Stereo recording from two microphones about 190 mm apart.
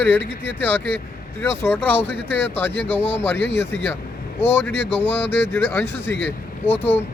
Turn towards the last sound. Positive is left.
turn(degrees=10)  # may be behind; listen again after turning